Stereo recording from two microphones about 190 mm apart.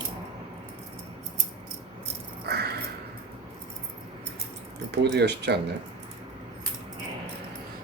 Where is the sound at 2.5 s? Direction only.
60° right (ahead or behind).